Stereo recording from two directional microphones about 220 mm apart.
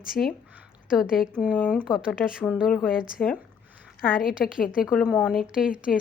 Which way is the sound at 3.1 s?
Centre (ahead or behind).